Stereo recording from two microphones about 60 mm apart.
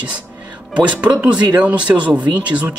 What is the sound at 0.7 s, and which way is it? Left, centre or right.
Speech, right.